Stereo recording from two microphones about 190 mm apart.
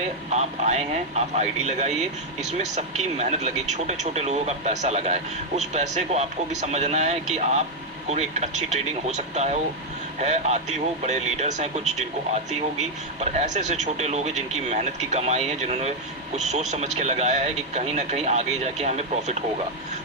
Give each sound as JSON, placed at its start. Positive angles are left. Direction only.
{"t": 0.3, "sound": "speech", "side_deg": -35}